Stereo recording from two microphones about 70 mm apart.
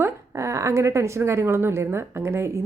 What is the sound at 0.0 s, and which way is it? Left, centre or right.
A woman's voice, right.